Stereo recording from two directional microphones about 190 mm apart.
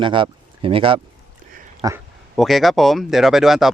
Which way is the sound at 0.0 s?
25° right (ahead or behind).